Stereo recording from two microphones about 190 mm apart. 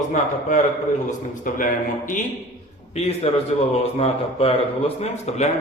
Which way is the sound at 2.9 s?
35° left (ahead or behind).